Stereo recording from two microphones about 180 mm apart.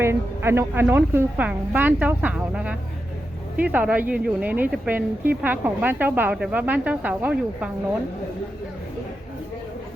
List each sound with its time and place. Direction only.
0.0 s a woman's voice: 15° right (ahead or behind)